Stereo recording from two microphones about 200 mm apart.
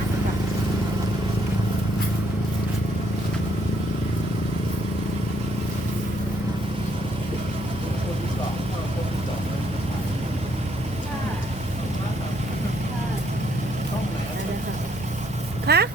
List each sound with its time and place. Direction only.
15.6 s vehicle: 55° right (ahead or behind)